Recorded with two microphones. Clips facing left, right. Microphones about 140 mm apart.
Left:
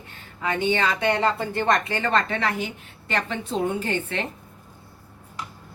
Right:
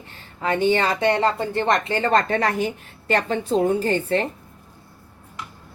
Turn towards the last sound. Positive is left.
turn(degrees=-40)  # may be behind; listen again after turning